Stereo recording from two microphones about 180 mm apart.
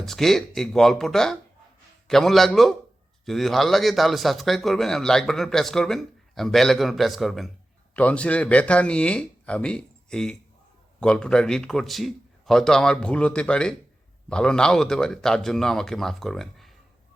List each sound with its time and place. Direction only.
0.0 s a man's voice: centre (ahead or behind)